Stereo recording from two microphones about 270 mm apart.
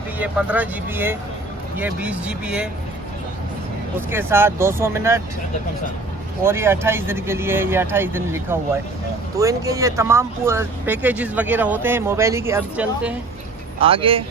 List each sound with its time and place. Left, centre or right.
0.2 s speech: centre
4.1 s speech: centre
6.4 s speech: centre
13.7 s speech: centre